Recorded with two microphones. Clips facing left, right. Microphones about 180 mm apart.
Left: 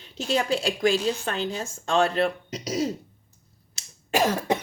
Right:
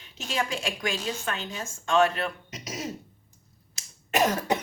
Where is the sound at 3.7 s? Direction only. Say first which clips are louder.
Left 1 dB; 30° left (ahead or behind).